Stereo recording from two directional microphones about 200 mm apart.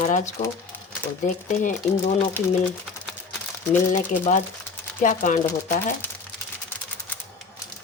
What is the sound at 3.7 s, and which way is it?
Speech, 40° left (ahead or behind).